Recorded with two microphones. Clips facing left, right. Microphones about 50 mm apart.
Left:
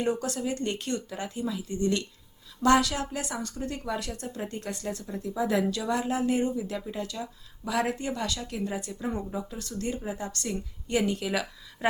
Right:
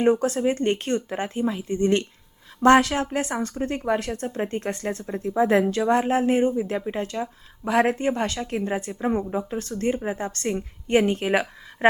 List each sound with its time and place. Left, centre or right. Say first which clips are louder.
0.0 s speech: right 9 dB; right